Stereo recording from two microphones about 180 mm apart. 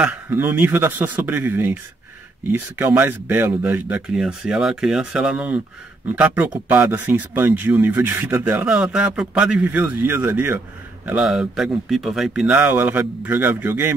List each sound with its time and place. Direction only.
0.0 s speech: 10° right (ahead or behind)